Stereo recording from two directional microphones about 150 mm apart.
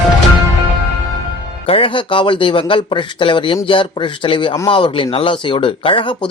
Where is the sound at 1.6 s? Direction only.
40° left (ahead or behind).